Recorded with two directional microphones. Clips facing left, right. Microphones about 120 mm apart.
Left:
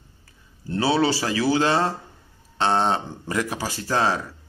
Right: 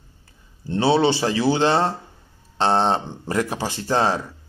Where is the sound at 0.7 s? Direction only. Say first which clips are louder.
Right 3 dB; 25° right (ahead or behind).